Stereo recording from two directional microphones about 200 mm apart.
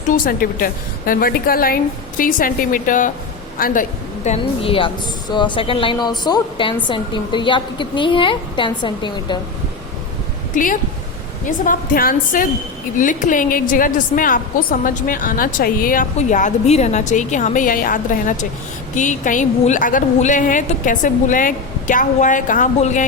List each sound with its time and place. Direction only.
0.1 s a woman's voice: 45° left (ahead or behind); by 9.4 s 20° left (ahead or behind)
10.5 s a woman's voice: 45° left (ahead or behind)